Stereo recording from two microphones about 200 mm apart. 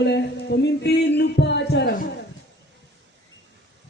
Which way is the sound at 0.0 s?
60° left (ahead or behind).